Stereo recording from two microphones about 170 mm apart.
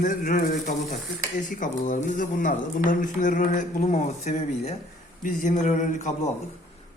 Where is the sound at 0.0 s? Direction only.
50° left (ahead or behind).